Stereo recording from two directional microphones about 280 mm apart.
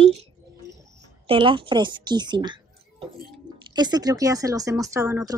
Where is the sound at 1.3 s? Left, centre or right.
Centre.